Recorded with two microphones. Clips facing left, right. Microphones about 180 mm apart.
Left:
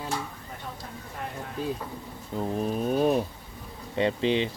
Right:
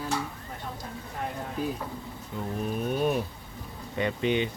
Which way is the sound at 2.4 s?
30° left (ahead or behind).